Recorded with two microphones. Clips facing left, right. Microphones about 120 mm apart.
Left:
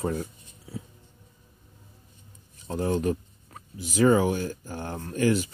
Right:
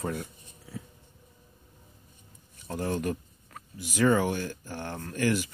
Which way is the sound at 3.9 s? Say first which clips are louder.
Left 3 dB; 30° left (ahead or behind).